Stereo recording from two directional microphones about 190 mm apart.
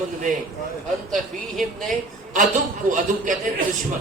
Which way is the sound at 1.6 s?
Centre (ahead or behind).